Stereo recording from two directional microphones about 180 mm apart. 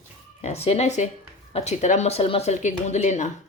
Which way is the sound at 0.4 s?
35° left (ahead or behind).